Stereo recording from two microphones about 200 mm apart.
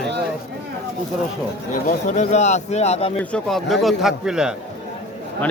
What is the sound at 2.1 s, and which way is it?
A man's voice, 35° left (ahead or behind).